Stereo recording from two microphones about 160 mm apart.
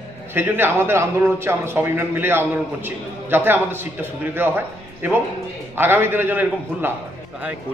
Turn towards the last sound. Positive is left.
turn(degrees=-15)  # may be behind; listen again after turning